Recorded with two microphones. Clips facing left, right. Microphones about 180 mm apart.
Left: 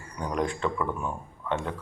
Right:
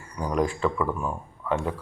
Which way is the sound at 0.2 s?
5° right (ahead or behind).